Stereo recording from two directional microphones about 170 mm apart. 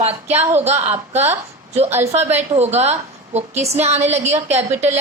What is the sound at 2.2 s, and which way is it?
A woman's voice, 40° right (ahead or behind).